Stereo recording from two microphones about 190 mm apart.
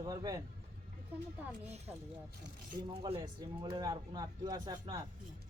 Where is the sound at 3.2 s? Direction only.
20° right (ahead or behind).